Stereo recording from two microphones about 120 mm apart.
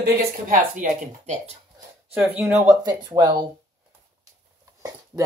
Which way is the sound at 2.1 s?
15° right (ahead or behind).